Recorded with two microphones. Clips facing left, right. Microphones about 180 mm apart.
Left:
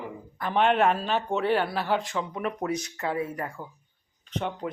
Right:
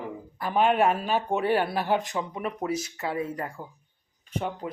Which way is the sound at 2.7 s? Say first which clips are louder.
Even; 25° right (ahead or behind).